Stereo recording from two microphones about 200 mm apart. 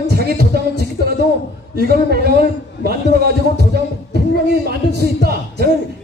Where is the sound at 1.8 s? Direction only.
50° right (ahead or behind).